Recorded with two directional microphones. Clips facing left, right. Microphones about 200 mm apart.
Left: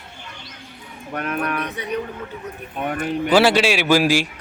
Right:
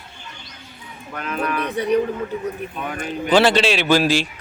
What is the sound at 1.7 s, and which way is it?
Speech, 35° right (ahead or behind).